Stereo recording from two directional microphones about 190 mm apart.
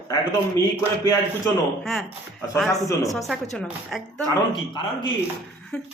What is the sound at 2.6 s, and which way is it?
Speech, 15° left (ahead or behind).